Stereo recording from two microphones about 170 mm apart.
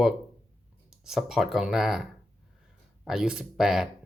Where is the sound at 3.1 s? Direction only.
5° right (ahead or behind).